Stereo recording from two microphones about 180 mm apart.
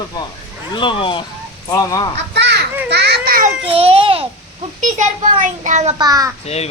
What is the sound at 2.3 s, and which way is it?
Children playing, 70° right (ahead or behind).